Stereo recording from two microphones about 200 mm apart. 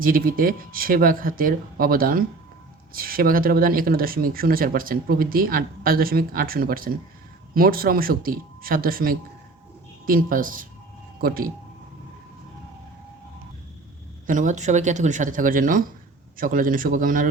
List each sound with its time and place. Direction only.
0.0 s speech: 45° right (ahead or behind)
14.3 s speech: 40° right (ahead or behind)